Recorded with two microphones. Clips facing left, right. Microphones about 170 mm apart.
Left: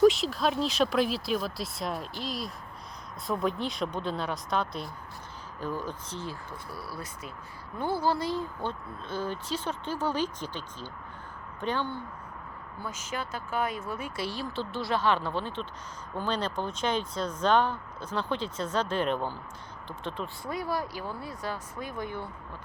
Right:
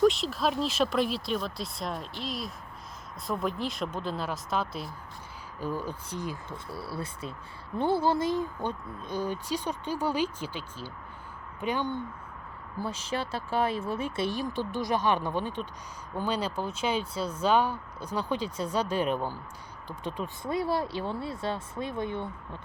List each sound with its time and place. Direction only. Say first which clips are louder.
0.0 s speech: left 2 dB; centre (ahead or behind)
6.7 s speech: right 5 dB; 30° right (ahead or behind)
12.8 s speech: right 4 dB; 30° right (ahead or behind)